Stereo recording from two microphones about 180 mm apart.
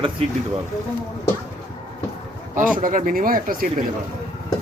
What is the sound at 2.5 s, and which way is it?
Speech, 50° right (ahead or behind).